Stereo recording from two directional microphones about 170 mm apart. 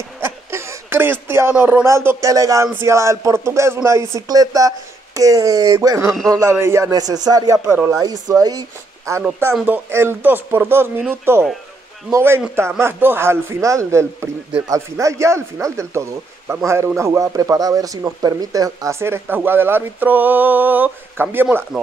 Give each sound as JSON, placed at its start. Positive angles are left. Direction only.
{"t": 0.2, "sound": "speech", "side_deg": -15}